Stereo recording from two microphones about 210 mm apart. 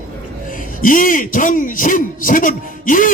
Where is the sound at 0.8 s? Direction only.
40° left (ahead or behind).